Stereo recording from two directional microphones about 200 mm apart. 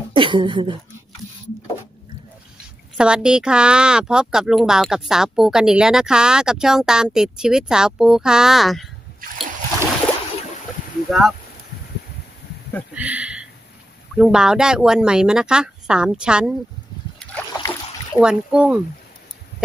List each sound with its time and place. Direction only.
0.1 s speech: 25° right (ahead or behind)
3.0 s speech: 5° right (ahead or behind)
11.1 s speech: centre (ahead or behind)
12.9 s speech: 5° right (ahead or behind)
17.6 s boat: 15° left (ahead or behind)
18.2 s speech: 5° right (ahead or behind)